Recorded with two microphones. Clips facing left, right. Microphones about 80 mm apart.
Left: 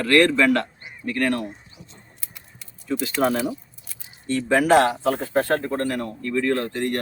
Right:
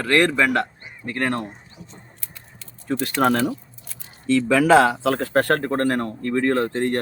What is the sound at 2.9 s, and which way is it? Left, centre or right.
Speech, right.